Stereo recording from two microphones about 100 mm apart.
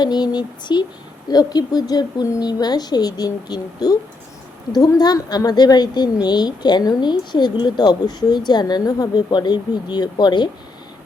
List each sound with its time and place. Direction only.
0.0 s speech: 45° left (ahead or behind)